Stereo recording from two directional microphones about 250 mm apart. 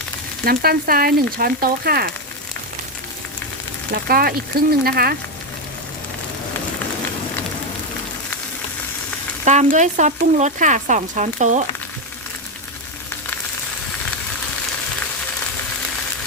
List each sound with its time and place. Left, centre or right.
0.4 s speech: right
3.9 s speech: right
9.4 s speech: right